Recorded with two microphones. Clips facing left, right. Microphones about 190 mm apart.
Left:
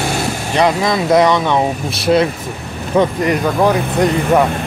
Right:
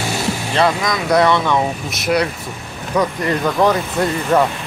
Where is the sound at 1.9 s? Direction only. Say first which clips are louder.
Left 5 dB; 30° left (ahead or behind).